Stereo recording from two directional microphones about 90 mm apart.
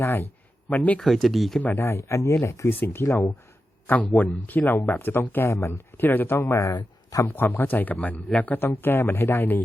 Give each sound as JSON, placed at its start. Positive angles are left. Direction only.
{"t": 0.0, "sound": "speech", "side_deg": 25}
{"t": 0.7, "sound": "speech", "side_deg": 15}
{"t": 0.9, "sound": "speech", "side_deg": 0}
{"t": 1.6, "sound": "speech", "side_deg": 25}